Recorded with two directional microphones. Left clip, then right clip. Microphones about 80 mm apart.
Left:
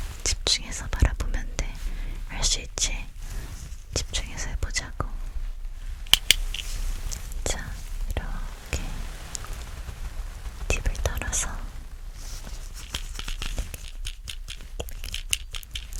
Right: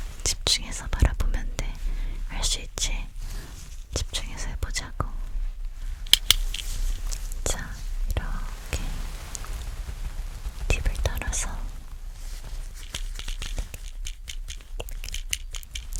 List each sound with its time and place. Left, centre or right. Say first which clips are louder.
0.2 s whispering: even; centre
6.2 s a sound: left 1 dB; right
7.1 s whispering: even; centre
9.3 s rain: left 2 dB; centre
10.7 s whispering: left 1 dB; centre
12.8 s a sound: left 2 dB; left